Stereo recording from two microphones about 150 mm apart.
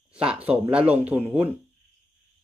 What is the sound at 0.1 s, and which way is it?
Speech, 5° right (ahead or behind).